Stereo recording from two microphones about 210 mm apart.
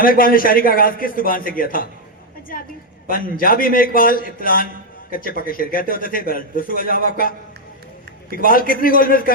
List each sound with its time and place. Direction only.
0.0 s a man's voice: 40° left (ahead or behind)
3.1 s a man's voice: 45° left (ahead or behind)
8.4 s a man's voice: 40° left (ahead or behind)